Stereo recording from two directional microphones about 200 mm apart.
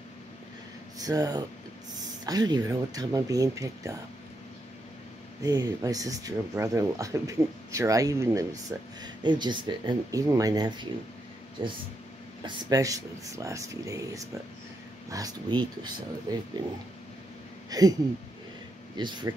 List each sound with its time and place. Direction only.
0.9 s speech: 20° right (ahead or behind)
5.4 s speech: 15° right (ahead or behind)
17.6 s speech: 20° right (ahead or behind)
18.9 s speech: 20° right (ahead or behind)